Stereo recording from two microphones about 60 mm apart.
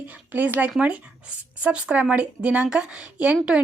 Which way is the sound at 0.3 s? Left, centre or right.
Right.